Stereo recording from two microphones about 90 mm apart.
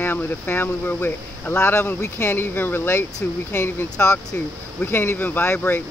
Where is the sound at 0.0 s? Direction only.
25° left (ahead or behind).